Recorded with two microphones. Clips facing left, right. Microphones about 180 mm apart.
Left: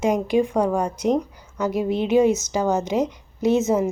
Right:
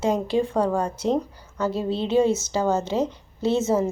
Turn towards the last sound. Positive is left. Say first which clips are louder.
# left 2 dB
turn(degrees=15)  # may be behind; listen again after turning